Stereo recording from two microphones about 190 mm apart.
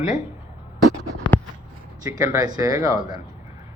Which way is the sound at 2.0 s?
20° right (ahead or behind).